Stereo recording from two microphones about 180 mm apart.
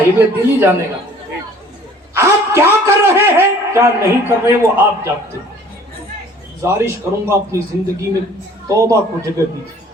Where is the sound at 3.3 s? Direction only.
15° right (ahead or behind).